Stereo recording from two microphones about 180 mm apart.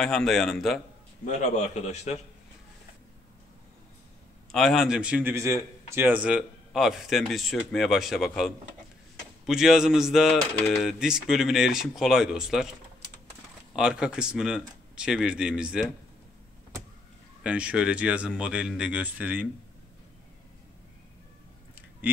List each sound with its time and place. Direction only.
0.0 s a man's voice: centre (ahead or behind)
1.2 s a man's voice: 40° left (ahead or behind)
4.5 s a man's voice: centre (ahead or behind)
13.7 s a man's voice: 5° right (ahead or behind)
17.4 s speech: 5° right (ahead or behind)